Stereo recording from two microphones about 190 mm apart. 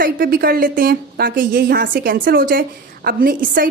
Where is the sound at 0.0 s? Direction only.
50° right (ahead or behind).